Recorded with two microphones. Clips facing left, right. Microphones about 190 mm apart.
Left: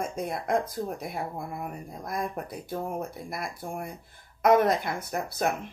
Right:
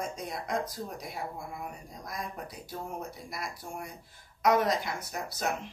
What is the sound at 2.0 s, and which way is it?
Speech, 55° left (ahead or behind).